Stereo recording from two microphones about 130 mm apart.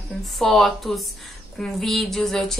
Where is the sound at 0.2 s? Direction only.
Centre (ahead or behind).